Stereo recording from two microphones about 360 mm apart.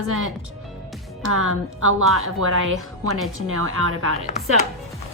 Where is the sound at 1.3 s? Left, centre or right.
Right.